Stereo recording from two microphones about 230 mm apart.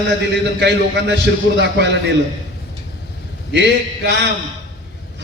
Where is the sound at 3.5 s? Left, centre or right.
Right.